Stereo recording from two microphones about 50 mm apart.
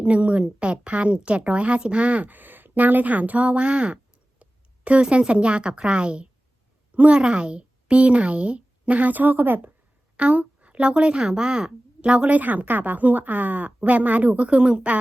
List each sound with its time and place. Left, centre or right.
0.0 s a woman's voice: right
10.2 s a woman's voice: right